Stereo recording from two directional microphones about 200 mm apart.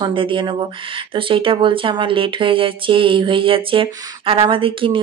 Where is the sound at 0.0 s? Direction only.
25° right (ahead or behind).